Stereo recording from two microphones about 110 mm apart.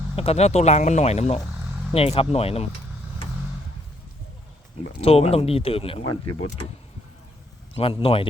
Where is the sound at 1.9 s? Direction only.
60° left (ahead or behind).